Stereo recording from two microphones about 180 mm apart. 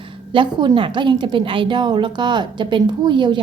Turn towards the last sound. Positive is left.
turn(degrees=-25)  # may be behind; listen again after turning